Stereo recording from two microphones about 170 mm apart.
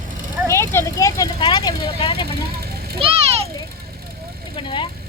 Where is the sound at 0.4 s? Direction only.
15° left (ahead or behind).